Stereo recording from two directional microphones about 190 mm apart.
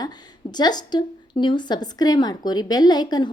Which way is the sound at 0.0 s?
20° left (ahead or behind).